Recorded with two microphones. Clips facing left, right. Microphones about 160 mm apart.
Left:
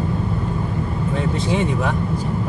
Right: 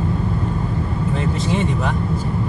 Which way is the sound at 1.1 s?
Centre (ahead or behind).